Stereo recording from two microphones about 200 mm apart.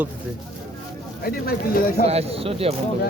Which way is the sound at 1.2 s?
50° left (ahead or behind).